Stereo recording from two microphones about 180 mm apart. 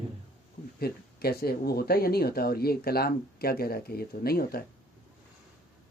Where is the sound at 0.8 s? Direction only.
60° left (ahead or behind).